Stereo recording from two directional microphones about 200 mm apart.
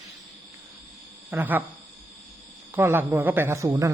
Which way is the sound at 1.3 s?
10° right (ahead or behind).